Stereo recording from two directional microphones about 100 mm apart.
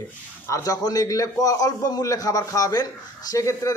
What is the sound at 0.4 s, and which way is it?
Speech, 35° left (ahead or behind).